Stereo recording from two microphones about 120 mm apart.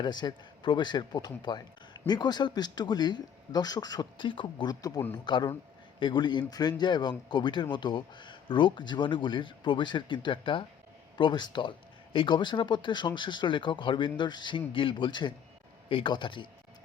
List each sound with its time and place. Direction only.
0.0 s speech: 35° left (ahead or behind)